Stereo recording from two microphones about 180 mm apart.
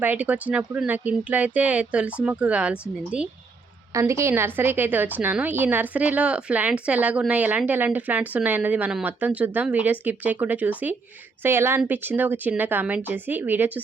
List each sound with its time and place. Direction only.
0.0 s a woman's voice: 10° right (ahead or behind)
3.9 s a woman's voice: 15° right (ahead or behind)